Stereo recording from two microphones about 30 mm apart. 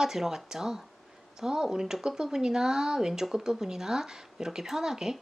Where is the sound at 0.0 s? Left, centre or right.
Centre.